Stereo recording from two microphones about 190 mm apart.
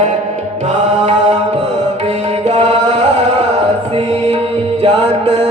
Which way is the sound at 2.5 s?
35° right (ahead or behind).